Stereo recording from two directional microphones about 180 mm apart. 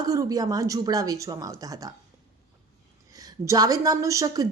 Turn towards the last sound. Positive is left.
turn(degrees=-15)  # may be behind; listen again after turning